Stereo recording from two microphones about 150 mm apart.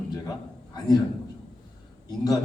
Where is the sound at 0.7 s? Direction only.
25° left (ahead or behind).